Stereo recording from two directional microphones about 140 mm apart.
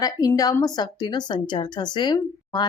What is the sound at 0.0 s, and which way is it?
A woman's voice, 25° left (ahead or behind).